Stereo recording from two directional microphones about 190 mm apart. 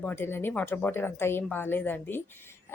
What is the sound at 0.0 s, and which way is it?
A woman's voice, 10° left (ahead or behind).